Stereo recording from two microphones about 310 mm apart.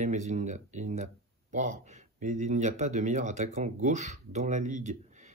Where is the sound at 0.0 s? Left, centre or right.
Right.